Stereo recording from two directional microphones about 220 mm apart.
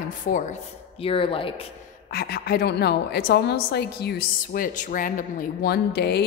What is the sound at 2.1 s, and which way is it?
A woman's voice, 45° left (ahead or behind).